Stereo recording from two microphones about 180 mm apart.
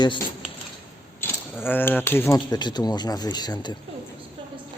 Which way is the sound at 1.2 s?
10° left (ahead or behind).